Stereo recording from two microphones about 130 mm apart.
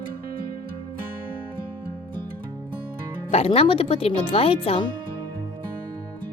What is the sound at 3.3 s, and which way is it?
Speech, 50° left (ahead or behind).